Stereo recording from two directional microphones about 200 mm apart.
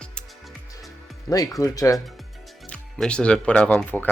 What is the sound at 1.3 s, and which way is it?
Speech, 20° left (ahead or behind).